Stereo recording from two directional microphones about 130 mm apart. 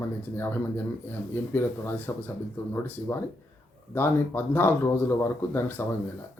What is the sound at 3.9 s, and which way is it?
Speech, 15° left (ahead or behind).